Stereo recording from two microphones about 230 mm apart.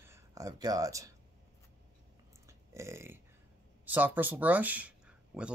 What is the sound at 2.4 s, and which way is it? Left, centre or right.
Burping, centre.